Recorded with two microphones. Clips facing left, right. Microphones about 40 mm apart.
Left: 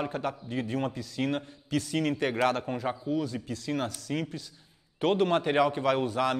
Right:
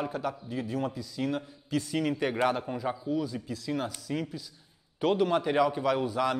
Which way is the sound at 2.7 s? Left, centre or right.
Left.